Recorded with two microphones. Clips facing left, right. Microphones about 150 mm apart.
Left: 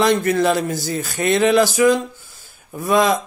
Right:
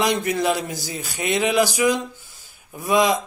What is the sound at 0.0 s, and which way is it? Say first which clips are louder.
A man's voice: left 5 dB; 15° right (ahead or behind).